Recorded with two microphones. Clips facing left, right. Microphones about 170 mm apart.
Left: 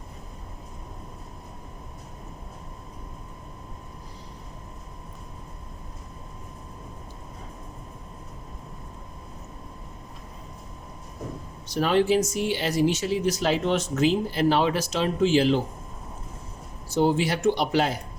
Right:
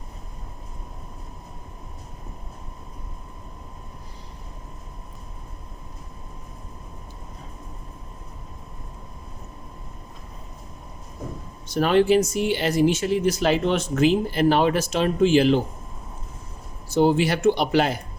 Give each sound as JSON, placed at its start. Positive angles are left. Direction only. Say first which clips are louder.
{"t": 11.7, "sound": "speech", "louder": "right 3 dB", "side_deg": -60}
{"t": 16.9, "sound": "speech", "louder": "right 3 dB", "side_deg": -65}